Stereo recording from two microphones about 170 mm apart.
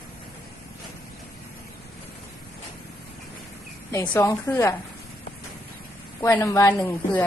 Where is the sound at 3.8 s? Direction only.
15° left (ahead or behind).